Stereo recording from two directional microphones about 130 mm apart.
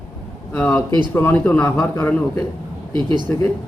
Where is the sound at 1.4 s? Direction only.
5° left (ahead or behind).